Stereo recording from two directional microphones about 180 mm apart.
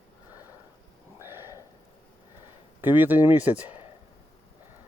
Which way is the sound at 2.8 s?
10° right (ahead or behind).